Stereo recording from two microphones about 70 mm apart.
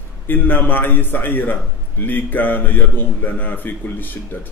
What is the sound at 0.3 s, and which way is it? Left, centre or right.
A man's voice, left.